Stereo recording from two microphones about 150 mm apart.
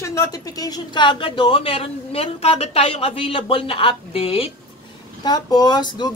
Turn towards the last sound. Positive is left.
turn(degrees=30)  # may be behind; listen again after turning